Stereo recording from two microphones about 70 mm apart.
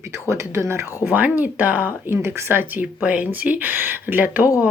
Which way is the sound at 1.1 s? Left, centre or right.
Right.